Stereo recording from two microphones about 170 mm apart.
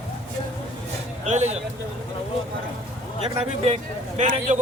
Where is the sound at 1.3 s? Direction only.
40° right (ahead or behind).